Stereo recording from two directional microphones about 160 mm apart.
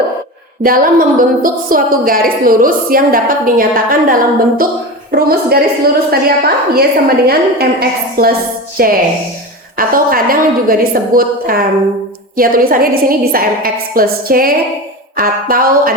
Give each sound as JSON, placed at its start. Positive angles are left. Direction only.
{"t": 0.6, "sound": "a woman's voice", "side_deg": -60}
{"t": 5.2, "sound": "a woman's voice", "side_deg": -75}